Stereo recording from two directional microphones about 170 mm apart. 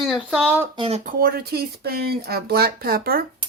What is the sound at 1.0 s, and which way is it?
Speech, 55° right (ahead or behind).